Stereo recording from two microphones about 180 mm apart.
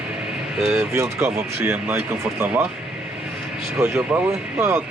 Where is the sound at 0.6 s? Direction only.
5° right (ahead or behind).